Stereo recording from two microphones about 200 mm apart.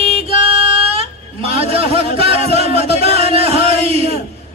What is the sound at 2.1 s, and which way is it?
Music, 30° right (ahead or behind).